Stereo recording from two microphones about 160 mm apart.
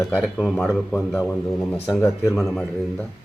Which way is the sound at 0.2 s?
Centre (ahead or behind).